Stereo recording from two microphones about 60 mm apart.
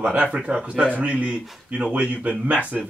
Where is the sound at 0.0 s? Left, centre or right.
Right.